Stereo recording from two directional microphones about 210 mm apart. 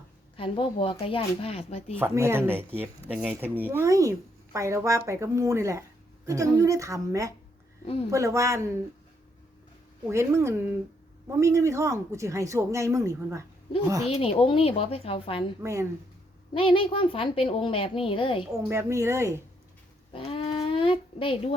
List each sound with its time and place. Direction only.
0.3 s a woman's voice: 25° left (ahead or behind)
2.0 s speech: 10° right (ahead or behind)
10.1 s speech: 15° right (ahead or behind)
14.1 s a woman's voice: 30° left (ahead or behind)
15.6 s speech: 15° right (ahead or behind)
16.6 s a woman's voice: 25° left (ahead or behind)
18.7 s speech: 15° right (ahead or behind)
20.1 s a sound: 25° left (ahead or behind)